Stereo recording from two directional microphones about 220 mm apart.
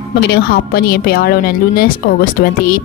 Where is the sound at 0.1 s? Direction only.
50° left (ahead or behind).